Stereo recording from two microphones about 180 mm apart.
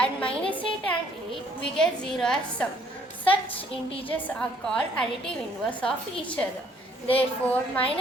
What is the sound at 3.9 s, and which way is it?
Speech, 30° left (ahead or behind).